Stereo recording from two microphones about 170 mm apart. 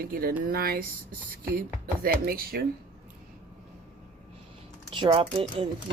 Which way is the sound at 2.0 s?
60° right (ahead or behind).